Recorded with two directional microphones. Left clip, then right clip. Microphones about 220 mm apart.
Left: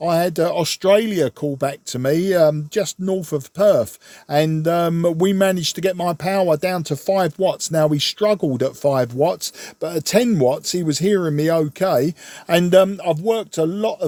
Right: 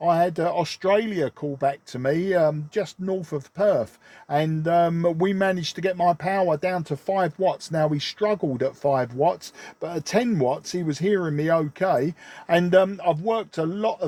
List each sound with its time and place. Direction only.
0.0 s speech: 45° left (ahead or behind)